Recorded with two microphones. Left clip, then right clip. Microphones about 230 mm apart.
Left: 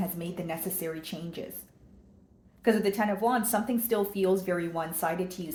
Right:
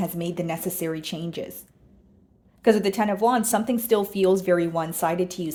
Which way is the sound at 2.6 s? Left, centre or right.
Right.